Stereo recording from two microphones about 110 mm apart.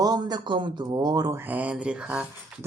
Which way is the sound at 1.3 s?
15° right (ahead or behind).